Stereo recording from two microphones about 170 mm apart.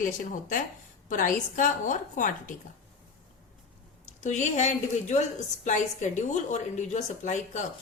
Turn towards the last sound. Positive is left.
turn(degrees=45)  # may be behind; listen again after turning